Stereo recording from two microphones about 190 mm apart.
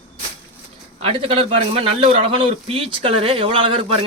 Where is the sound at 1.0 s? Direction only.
30° right (ahead or behind).